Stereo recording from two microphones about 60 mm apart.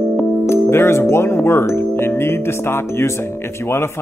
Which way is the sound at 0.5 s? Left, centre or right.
Left.